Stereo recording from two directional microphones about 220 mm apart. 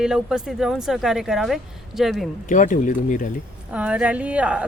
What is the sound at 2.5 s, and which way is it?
Speech, 35° left (ahead or behind).